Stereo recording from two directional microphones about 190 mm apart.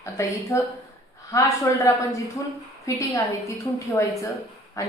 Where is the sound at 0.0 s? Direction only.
15° left (ahead or behind).